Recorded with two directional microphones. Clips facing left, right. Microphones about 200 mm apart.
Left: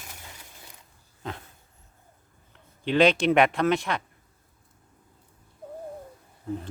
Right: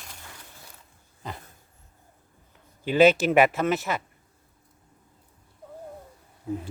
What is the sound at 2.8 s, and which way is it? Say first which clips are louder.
Speech: right 2 dB; 5° right (ahead or behind).